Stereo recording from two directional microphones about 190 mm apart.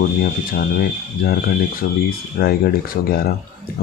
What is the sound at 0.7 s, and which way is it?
Speech, 55° left (ahead or behind).